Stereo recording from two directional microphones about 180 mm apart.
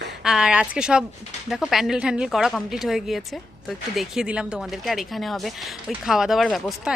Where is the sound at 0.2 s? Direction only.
5° right (ahead or behind).